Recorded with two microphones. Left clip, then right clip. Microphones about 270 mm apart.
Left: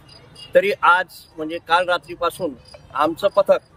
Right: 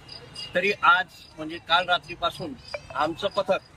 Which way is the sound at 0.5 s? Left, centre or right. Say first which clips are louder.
Left 6 dB; centre.